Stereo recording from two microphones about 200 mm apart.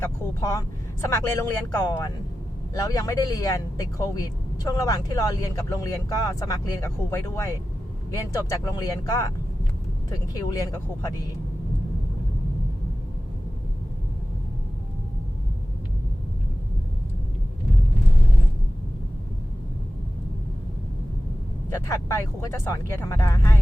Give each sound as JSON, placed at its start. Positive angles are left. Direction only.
{"t": 0.0, "sound": "speech", "side_deg": 15}
{"t": 2.7, "sound": "speech", "side_deg": 20}
{"t": 21.8, "sound": "speech", "side_deg": 15}